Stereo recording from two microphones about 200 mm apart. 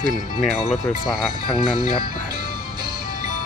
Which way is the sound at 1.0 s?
Centre (ahead or behind).